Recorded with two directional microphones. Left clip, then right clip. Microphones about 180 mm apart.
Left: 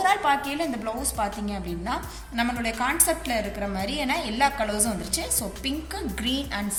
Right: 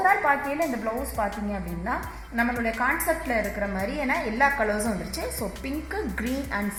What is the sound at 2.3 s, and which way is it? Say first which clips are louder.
A woman's voice: right 1 dB; 25° right (ahead or behind).